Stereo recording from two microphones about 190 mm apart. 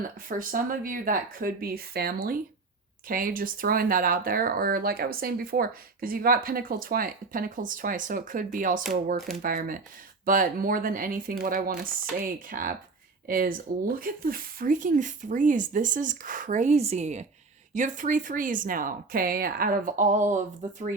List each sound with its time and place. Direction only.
0.3 s speech: 45° right (ahead or behind)